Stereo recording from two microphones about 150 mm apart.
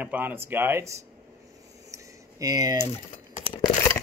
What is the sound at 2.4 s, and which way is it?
Speech, 25° right (ahead or behind).